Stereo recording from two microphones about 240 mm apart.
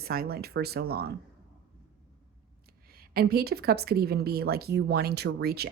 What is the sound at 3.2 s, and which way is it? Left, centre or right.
Speech, right.